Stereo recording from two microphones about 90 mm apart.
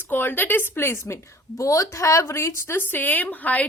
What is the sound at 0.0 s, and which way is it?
A woman's voice, 20° left (ahead or behind).